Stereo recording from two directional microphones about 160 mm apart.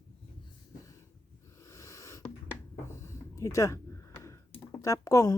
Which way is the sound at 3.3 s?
20° left (ahead or behind).